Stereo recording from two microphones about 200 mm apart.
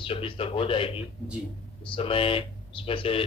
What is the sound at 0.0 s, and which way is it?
A man's voice, 25° left (ahead or behind).